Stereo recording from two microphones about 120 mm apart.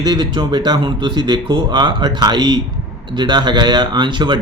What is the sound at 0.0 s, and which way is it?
Speech, 35° right (ahead or behind).